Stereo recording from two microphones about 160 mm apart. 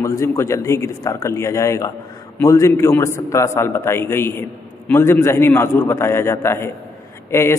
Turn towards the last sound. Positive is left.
turn(degrees=15)  # may be behind; listen again after turning